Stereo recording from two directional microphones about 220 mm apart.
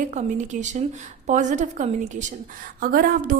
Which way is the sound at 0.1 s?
30° right (ahead or behind).